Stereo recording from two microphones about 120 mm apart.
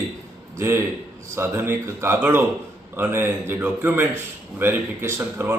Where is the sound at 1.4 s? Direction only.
20° right (ahead or behind).